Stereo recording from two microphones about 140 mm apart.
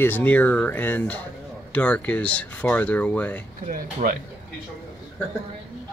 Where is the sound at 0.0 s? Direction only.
15° left (ahead or behind).